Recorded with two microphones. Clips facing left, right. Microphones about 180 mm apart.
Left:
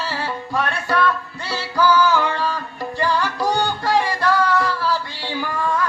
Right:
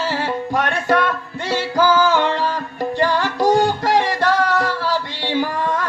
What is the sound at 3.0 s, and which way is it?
Music, 40° right (ahead or behind).